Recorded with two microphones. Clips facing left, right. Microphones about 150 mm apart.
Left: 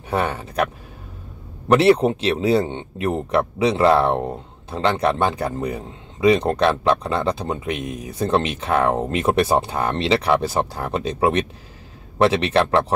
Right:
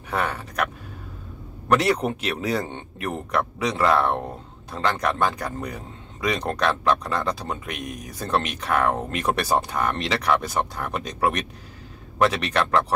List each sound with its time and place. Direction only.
0.1 s speech: 25° left (ahead or behind)
1.7 s speech: 30° left (ahead or behind)